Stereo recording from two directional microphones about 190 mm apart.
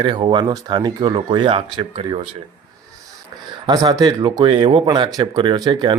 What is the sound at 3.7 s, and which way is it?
Speech, 20° right (ahead or behind).